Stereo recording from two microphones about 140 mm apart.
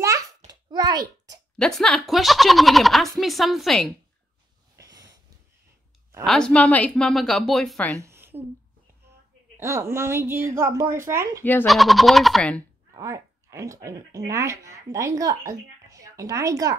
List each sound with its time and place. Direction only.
0.0 s a sound: 20° right (ahead or behind)
1.6 s a woman's voice: 5° left (ahead or behind)
4.7 s wheeze: 25° right (ahead or behind)
6.2 s a woman's voice: 5° left (ahead or behind)
8.0 s a sound: 20° right (ahead or behind)
9.6 s a woman's voice: 20° right (ahead or behind)
11.6 s a woman's voice: centre (ahead or behind)
12.9 s speech: 20° right (ahead or behind)